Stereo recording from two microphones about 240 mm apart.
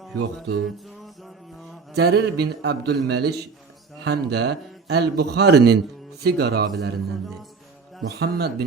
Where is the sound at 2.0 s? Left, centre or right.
Right.